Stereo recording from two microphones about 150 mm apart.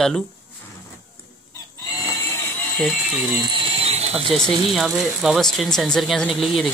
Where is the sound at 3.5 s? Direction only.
40° right (ahead or behind).